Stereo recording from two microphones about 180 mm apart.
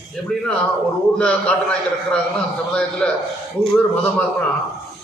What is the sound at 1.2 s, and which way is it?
A man's voice, 5° left (ahead or behind).